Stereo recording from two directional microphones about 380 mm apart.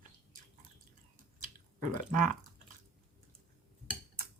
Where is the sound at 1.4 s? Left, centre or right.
Centre.